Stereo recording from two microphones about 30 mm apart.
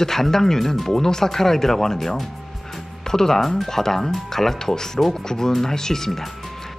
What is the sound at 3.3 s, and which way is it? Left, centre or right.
Speech, centre.